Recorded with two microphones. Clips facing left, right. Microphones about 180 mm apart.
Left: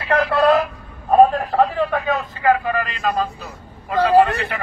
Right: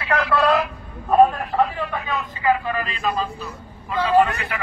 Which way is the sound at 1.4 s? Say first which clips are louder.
Left 4 dB; 40° left (ahead or behind).